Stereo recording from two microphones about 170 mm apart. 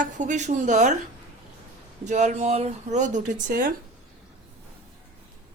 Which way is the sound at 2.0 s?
45° right (ahead or behind).